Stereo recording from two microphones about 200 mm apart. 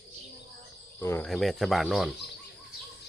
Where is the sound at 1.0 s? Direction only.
10° left (ahead or behind).